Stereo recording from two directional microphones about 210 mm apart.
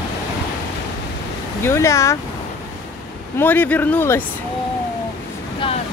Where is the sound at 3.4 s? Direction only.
10° left (ahead or behind).